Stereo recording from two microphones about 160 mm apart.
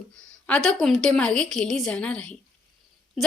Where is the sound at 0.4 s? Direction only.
5° left (ahead or behind).